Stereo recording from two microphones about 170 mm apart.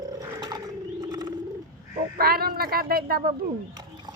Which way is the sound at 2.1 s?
60° right (ahead or behind).